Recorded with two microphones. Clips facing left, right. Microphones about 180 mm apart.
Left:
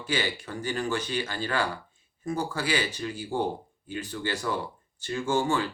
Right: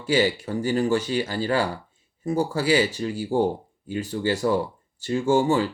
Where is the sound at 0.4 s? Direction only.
40° right (ahead or behind).